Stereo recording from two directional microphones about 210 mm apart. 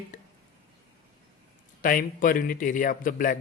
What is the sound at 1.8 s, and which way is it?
A man's voice, 40° left (ahead or behind).